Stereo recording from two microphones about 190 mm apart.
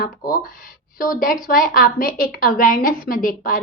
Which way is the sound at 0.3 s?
45° left (ahead or behind).